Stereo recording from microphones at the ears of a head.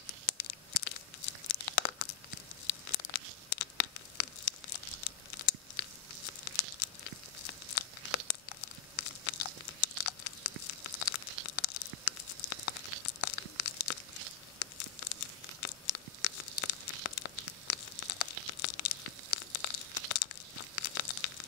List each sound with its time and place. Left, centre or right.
0.0 s tearing: left
10.7 s crumpling: left
11.4 s tearing: left
20.1 s crumpling: left